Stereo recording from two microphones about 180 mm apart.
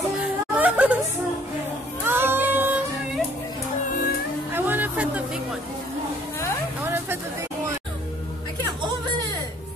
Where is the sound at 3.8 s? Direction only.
50° left (ahead or behind).